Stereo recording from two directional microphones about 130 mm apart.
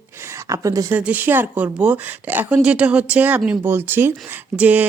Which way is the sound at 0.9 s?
10° right (ahead or behind).